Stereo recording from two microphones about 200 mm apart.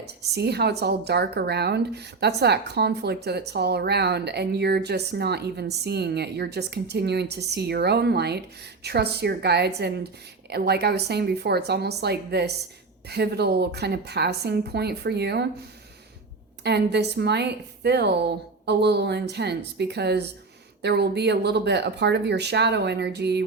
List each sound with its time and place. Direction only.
0.0 s a woman's voice: 55° right (ahead or behind)
16.6 s a woman's voice: 55° right (ahead or behind)